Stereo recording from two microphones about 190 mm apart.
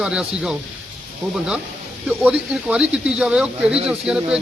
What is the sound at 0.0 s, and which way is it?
Speech, 5° right (ahead or behind).